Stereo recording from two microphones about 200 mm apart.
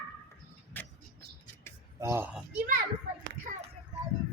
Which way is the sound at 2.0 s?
10° right (ahead or behind).